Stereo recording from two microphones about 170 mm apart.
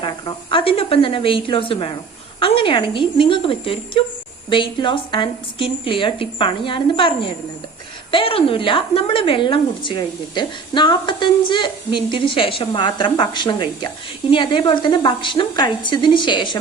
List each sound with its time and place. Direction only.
0.0 s a woman's voice: 30° left (ahead or behind)